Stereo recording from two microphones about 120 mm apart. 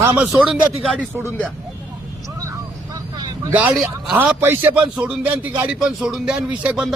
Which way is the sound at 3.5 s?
15° right (ahead or behind).